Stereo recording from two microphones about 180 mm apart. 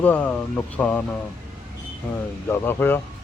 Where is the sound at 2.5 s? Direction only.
10° left (ahead or behind).